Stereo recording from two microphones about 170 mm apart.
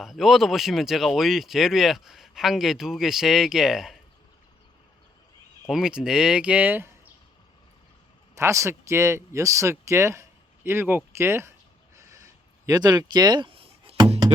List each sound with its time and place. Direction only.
0.0 s speech: centre (ahead or behind)
5.6 s speech: 5° right (ahead or behind)
8.4 s speech: 15° right (ahead or behind)
11.9 s a sound: 20° right (ahead or behind)